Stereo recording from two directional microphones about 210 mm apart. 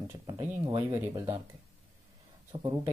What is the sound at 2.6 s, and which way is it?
Speech, 20° right (ahead or behind).